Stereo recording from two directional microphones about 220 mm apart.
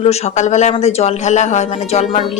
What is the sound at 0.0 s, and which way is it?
Speech, 30° left (ahead or behind).